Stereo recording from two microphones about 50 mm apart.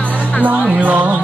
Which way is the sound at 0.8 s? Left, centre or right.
Right.